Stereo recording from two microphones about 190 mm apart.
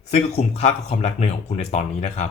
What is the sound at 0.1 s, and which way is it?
Speech, 35° left (ahead or behind).